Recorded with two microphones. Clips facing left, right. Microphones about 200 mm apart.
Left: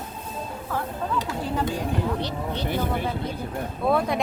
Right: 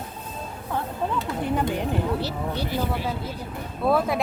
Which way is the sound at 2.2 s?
5° right (ahead or behind).